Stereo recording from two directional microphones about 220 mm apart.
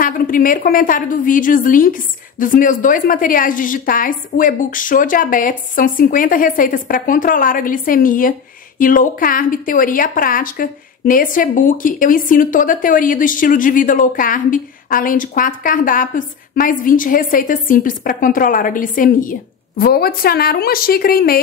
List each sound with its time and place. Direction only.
0.0 s a woman's voice: 40° left (ahead or behind)